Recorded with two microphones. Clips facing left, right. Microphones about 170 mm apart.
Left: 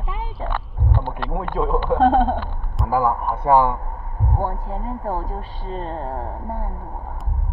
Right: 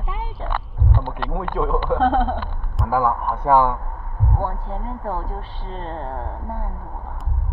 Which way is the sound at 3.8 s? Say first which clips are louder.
Even; 20° left (ahead or behind).